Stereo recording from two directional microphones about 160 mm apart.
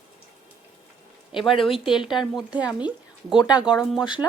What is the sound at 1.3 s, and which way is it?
Speech, centre (ahead or behind).